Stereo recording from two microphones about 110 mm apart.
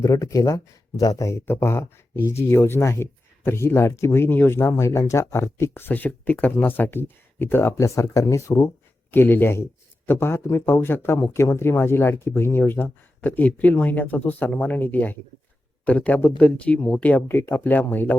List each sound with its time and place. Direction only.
0.0 s speech: 30° left (ahead or behind)